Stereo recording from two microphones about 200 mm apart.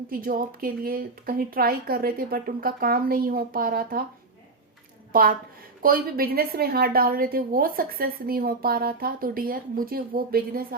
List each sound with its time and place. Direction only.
0.1 s a woman's voice: 45° right (ahead or behind)
5.8 s a woman's voice: 45° right (ahead or behind)